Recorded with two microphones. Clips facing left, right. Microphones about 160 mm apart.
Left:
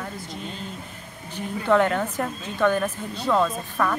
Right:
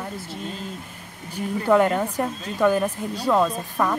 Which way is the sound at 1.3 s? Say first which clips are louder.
Right 2 dB; 10° right (ahead or behind).